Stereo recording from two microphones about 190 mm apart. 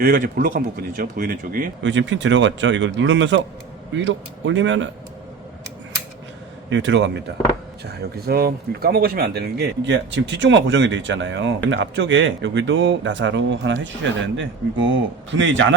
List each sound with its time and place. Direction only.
0.0 s speech: 50° right (ahead or behind)
1.8 s speech: 70° right (ahead or behind)
6.7 s speech: 70° right (ahead or behind)
7.9 s speech: 55° right (ahead or behind); by 15.6 s 75° right (ahead or behind)